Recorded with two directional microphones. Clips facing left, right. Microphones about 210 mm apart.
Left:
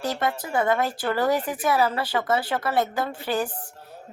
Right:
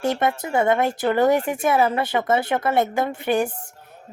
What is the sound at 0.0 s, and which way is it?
Speech, 25° right (ahead or behind).